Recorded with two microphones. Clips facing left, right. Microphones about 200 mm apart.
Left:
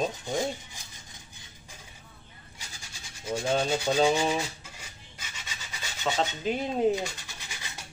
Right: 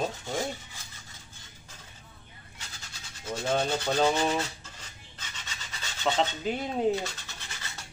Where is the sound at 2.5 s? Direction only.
10° left (ahead or behind).